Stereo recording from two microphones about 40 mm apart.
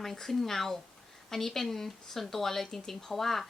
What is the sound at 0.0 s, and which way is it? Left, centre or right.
A woman's voice, centre.